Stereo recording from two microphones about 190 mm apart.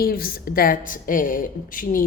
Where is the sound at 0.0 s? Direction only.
50° left (ahead or behind).